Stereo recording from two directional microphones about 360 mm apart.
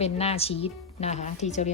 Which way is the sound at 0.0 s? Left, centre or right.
Centre.